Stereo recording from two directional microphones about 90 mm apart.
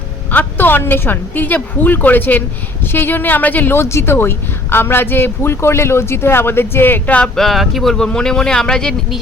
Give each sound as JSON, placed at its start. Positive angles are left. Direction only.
{"t": 0.3, "sound": "speech", "side_deg": 20}
{"t": 7.2, "sound": "speech", "side_deg": 5}